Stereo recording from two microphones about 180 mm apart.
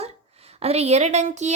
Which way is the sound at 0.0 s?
35° right (ahead or behind).